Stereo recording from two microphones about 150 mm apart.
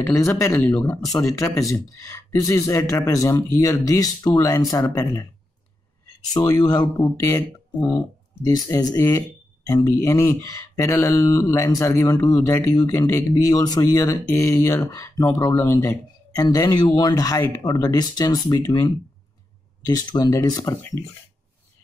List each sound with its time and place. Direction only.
0.0 s speech: 20° left (ahead or behind)
6.3 s speech: 25° left (ahead or behind)
20.1 s speech: 25° left (ahead or behind)